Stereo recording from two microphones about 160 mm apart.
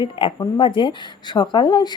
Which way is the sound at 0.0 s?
30° left (ahead or behind).